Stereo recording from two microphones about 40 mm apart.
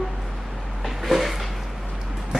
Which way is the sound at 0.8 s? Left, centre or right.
Centre.